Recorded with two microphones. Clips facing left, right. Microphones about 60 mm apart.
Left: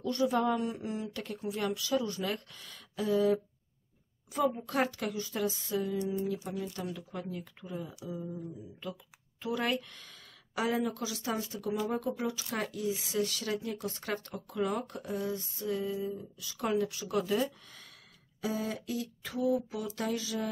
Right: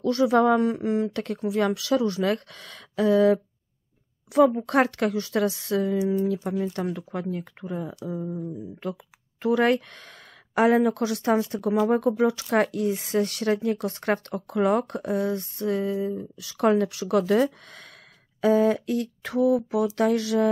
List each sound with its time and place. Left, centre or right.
0.0 s speech: right